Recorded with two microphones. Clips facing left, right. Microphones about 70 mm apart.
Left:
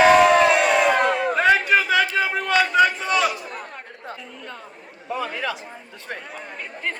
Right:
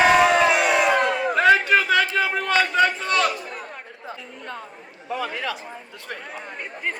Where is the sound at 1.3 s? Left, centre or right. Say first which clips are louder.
Right 2 dB; centre.